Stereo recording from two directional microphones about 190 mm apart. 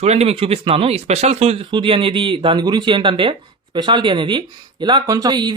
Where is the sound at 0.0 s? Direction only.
35° right (ahead or behind).